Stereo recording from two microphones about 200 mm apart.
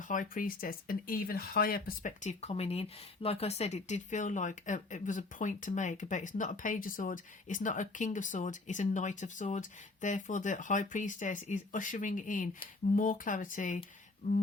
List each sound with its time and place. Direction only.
0.1 s speech: 40° left (ahead or behind)